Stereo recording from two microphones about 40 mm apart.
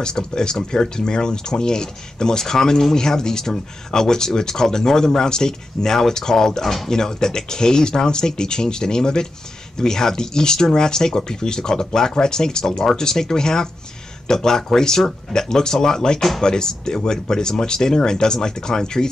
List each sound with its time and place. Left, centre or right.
0.0 s speech: left